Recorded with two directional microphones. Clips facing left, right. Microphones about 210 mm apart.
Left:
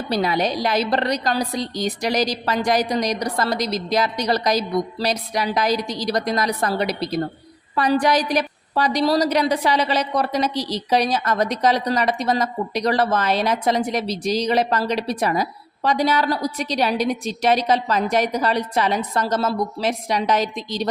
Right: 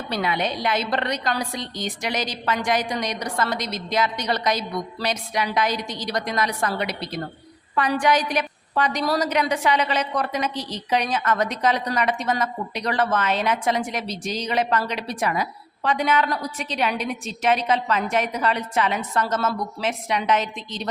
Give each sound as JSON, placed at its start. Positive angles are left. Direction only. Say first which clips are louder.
{"t": 0.1, "sound": "a woman's voice", "louder": "left 4 dB", "side_deg": 35}